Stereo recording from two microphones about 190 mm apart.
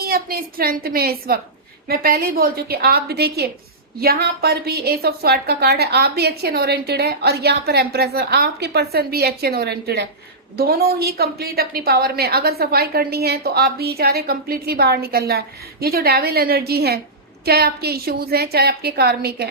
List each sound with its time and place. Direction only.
0.0 s a woman's voice: 50° right (ahead or behind)